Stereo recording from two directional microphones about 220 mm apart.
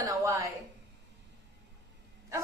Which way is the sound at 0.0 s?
15° right (ahead or behind).